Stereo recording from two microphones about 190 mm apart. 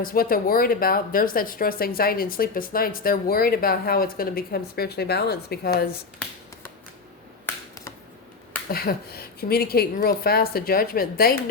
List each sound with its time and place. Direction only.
0.0 s speech: 50° left (ahead or behind)
8.7 s speech: 55° left (ahead or behind)